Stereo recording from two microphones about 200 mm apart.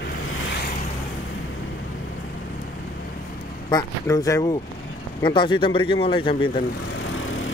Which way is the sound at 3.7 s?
15° left (ahead or behind).